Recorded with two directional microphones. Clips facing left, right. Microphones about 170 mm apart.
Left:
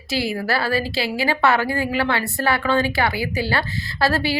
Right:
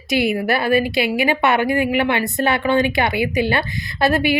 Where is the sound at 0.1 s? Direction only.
20° right (ahead or behind).